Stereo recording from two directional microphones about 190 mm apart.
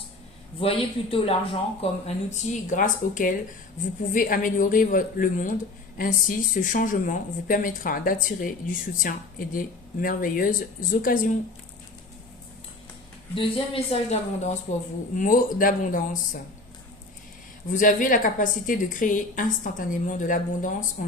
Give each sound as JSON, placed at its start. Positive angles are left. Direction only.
{"t": 0.6, "sound": "speech", "side_deg": 30}
{"t": 13.3, "sound": "speech", "side_deg": 30}
{"t": 15.1, "sound": "speech", "side_deg": 45}
{"t": 17.7, "sound": "speech", "side_deg": 45}